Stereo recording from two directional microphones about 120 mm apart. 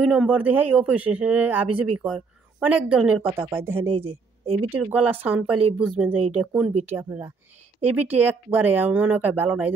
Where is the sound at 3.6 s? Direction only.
20° right (ahead or behind).